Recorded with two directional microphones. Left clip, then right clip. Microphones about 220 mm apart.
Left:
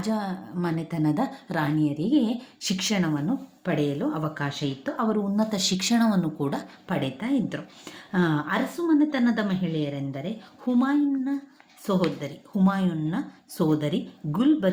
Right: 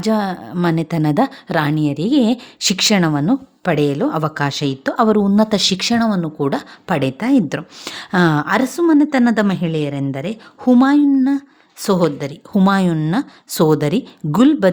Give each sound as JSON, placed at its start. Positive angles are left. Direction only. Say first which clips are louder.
{"t": 0.0, "sound": "a woman's voice", "louder": "right 11 dB", "side_deg": -45}